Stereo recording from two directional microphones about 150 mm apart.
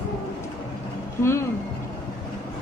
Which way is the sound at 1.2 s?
20° left (ahead or behind).